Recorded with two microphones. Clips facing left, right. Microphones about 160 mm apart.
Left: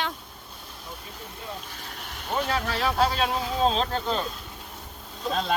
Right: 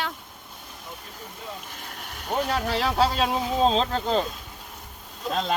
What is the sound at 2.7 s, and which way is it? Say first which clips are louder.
Speech: right 1 dB; 25° right (ahead or behind).